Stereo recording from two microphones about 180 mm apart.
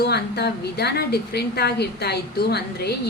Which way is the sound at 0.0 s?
65° left (ahead or behind).